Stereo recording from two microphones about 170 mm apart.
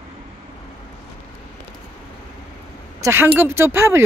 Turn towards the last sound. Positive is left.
turn(degrees=-15)  # may be behind; listen again after turning